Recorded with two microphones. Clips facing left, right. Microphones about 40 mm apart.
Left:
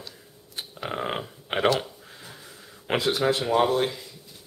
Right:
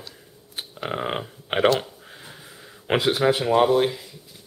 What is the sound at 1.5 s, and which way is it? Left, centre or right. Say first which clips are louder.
Speech: right 4 dB; right.